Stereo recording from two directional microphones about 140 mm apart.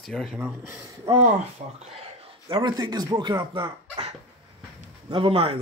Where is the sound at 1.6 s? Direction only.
65° right (ahead or behind).